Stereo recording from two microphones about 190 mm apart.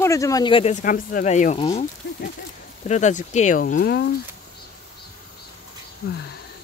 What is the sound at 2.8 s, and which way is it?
Speech, 40° left (ahead or behind).